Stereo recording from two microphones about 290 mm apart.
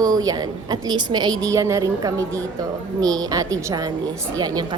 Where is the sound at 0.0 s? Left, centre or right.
Centre.